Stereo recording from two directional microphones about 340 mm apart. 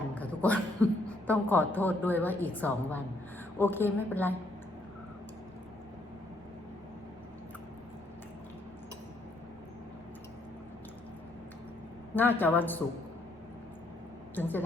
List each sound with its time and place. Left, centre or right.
0.1 s a woman's voice: centre
12.4 s a woman's voice: centre
14.3 s a woman's voice: centre